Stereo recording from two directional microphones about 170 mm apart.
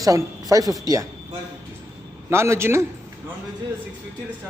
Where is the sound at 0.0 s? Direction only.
20° right (ahead or behind).